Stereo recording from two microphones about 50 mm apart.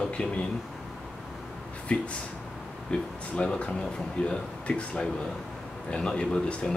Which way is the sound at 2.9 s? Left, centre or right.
Left.